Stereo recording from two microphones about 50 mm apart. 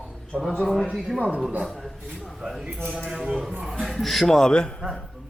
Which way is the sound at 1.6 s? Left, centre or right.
Centre.